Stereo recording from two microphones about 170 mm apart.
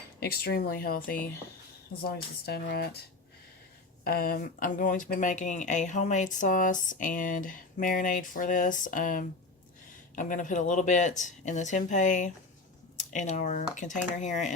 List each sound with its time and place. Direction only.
0.2 s speech: 65° left (ahead or behind)
4.0 s speech: 60° left (ahead or behind); by 14.5 s 45° left (ahead or behind)